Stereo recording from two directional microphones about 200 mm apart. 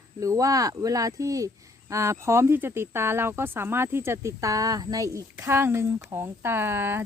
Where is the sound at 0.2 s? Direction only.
15° right (ahead or behind).